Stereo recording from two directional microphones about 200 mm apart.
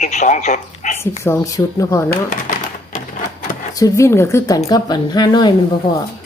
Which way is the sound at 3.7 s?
15° left (ahead or behind).